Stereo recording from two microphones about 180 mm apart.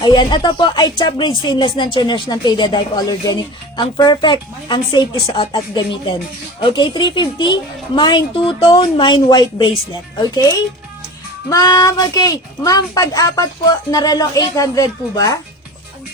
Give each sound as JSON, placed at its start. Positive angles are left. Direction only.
{"t": 0.0, "sound": "speech", "side_deg": 25}